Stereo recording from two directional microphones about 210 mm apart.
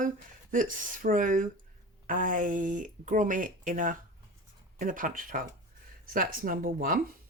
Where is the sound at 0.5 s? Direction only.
40° right (ahead or behind).